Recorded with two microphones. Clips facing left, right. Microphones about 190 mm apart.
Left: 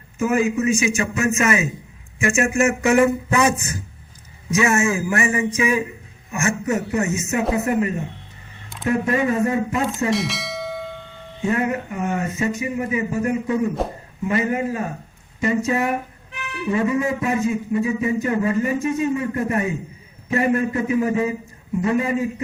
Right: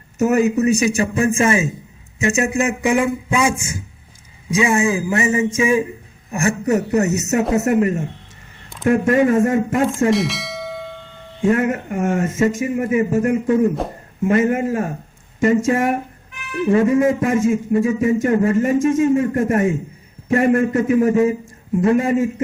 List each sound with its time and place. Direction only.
0.2 s a man's voice: 40° right (ahead or behind); by 3.5 s 10° right (ahead or behind)
4.5 s a man's voice: 15° right (ahead or behind); by 10.1 s 50° right (ahead or behind)
10.1 s bell: centre (ahead or behind)
11.4 s a man's voice: 45° right (ahead or behind)